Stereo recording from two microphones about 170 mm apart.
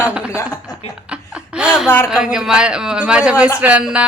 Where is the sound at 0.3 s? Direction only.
15° left (ahead or behind).